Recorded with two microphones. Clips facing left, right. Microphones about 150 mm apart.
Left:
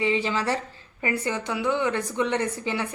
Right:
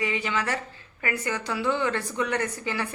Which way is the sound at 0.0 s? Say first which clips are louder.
Left 4 dB; 30° left (ahead or behind).